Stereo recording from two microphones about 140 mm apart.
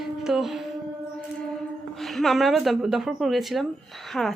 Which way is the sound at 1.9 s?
Centre (ahead or behind).